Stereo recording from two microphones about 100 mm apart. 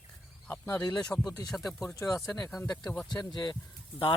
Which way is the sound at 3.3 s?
45° left (ahead or behind).